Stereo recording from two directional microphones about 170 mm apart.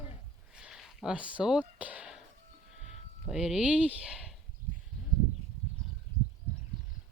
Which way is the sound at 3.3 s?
5° right (ahead or behind).